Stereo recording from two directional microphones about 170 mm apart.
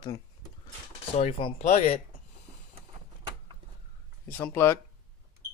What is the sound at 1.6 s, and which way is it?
Speech, 45° left (ahead or behind).